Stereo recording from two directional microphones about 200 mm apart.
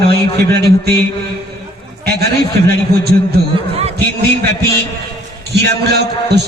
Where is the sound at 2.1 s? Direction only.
55° right (ahead or behind).